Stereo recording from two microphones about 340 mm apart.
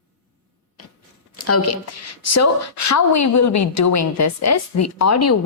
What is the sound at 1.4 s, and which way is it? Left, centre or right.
A woman's voice, left.